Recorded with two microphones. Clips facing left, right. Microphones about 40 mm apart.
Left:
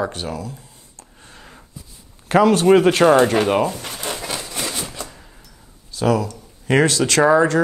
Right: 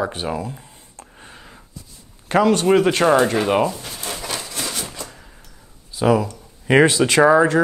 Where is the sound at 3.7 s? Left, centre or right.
Left.